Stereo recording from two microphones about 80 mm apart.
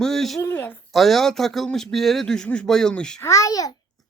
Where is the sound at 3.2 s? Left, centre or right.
Left.